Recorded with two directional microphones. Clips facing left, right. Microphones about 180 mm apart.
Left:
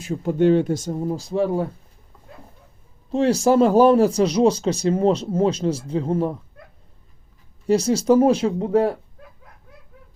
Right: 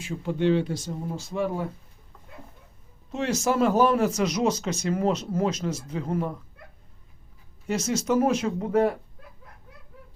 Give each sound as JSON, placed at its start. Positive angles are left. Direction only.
{"t": 0.0, "sound": "speech", "side_deg": 40}
{"t": 3.1, "sound": "speech", "side_deg": 35}
{"t": 7.7, "sound": "speech", "side_deg": 35}